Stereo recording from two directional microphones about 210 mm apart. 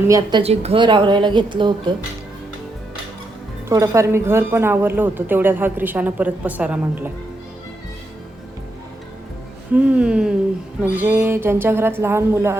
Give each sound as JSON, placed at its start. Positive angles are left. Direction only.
{"t": 0.1, "sound": "a woman's voice", "side_deg": -20}
{"t": 3.7, "sound": "speech", "side_deg": -15}
{"t": 9.7, "sound": "speech", "side_deg": -5}